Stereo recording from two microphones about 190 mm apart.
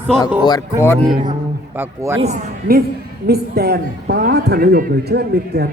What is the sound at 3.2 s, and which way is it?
A woman's voice, 55° right (ahead or behind).